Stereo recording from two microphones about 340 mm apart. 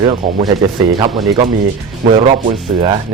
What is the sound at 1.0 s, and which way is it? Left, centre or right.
Speech, centre.